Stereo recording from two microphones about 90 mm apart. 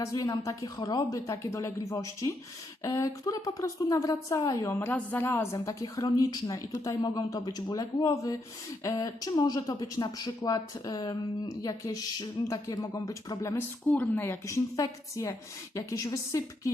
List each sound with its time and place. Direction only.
0.0 s speech: 40° left (ahead or behind)
4.9 s speech: 20° left (ahead or behind)
5.5 s speech: 45° left (ahead or behind)
13.6 s speech: 15° left (ahead or behind)
14.4 s speech: 35° left (ahead or behind)